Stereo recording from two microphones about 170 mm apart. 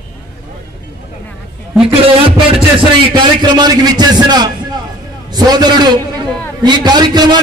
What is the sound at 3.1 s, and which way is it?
A man's voice, 25° right (ahead or behind).